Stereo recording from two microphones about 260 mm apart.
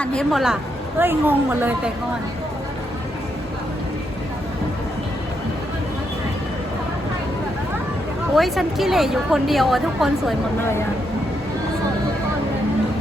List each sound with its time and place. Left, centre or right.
0.0 s a woman's voice: centre
8.4 s a woman's voice: centre